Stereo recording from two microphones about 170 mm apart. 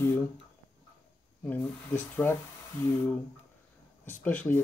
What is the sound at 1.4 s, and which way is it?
Speech, 10° left (ahead or behind).